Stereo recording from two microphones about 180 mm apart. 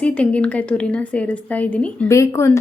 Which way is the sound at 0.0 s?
5° left (ahead or behind).